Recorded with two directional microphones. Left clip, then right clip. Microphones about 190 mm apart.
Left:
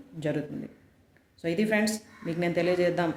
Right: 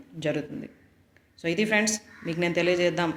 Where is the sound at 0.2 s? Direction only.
10° left (ahead or behind).